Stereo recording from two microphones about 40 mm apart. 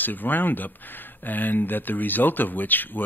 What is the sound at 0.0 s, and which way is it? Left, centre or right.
Speech, left.